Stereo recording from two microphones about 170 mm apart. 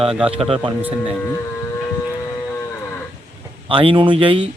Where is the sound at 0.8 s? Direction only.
10° right (ahead or behind).